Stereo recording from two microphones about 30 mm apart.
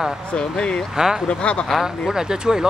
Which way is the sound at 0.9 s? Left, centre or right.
Centre.